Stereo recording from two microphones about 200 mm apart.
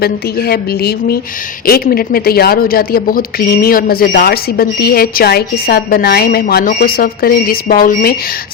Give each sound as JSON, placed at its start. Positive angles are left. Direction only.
{"t": 0.0, "sound": "speech", "side_deg": 50}